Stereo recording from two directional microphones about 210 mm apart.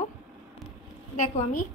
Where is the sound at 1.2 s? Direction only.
35° left (ahead or behind).